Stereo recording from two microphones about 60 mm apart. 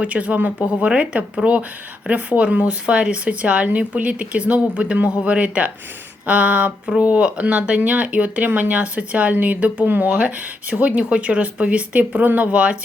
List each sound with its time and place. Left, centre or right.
0.0 s speech: right